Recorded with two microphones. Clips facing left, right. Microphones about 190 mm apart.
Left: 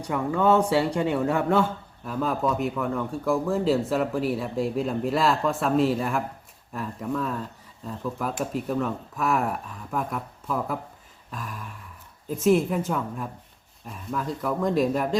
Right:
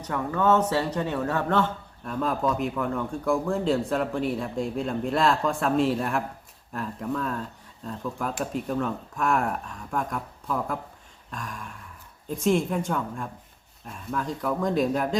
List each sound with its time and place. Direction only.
0.0 s a man's voice: 10° left (ahead or behind)